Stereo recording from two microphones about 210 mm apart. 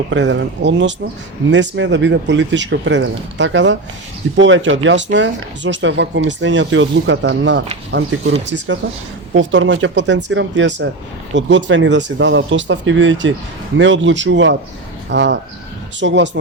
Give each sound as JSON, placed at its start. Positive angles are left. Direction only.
{"t": 0.1, "sound": "speech", "side_deg": -60}